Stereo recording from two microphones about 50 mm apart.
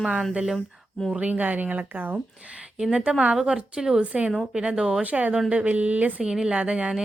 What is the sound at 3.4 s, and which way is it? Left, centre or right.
A woman's voice, centre.